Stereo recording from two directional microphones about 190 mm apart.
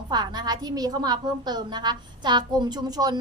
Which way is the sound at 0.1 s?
20° right (ahead or behind).